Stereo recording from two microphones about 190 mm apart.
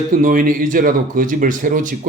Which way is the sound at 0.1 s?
45° right (ahead or behind).